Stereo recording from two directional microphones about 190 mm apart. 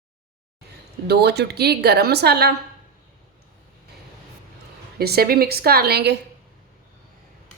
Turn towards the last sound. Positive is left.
turn(degrees=-60)  # may be behind; listen again after turning